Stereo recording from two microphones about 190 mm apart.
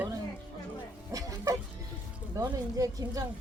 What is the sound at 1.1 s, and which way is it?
A woman's voice, 20° right (ahead or behind).